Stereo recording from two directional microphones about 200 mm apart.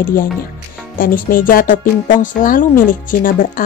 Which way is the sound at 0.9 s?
45° left (ahead or behind).